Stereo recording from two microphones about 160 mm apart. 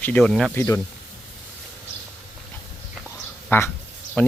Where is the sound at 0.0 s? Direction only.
5° left (ahead or behind).